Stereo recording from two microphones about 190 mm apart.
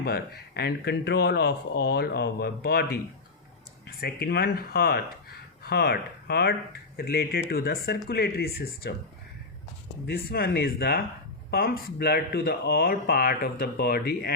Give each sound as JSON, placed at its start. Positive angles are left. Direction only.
{"t": 0.0, "sound": "speech", "side_deg": 55}
{"t": 10.1, "sound": "speech", "side_deg": 55}